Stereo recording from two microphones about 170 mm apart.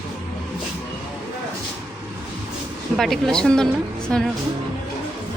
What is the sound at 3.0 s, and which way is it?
Speech, centre (ahead or behind).